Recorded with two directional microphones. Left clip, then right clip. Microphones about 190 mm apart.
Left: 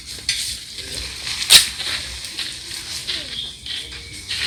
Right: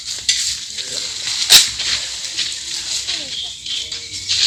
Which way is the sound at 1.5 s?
25° right (ahead or behind).